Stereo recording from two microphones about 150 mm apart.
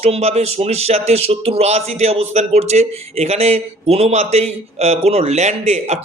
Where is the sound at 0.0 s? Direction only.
45° right (ahead or behind).